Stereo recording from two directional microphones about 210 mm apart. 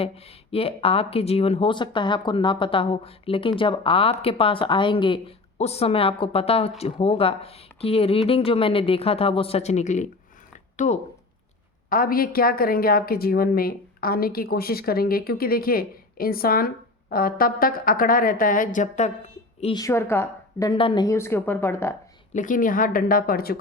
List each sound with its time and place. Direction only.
0.0 s a woman's voice: 25° left (ahead or behind)
19.8 s a woman's voice: 10° left (ahead or behind)
22.3 s speech: 40° left (ahead or behind)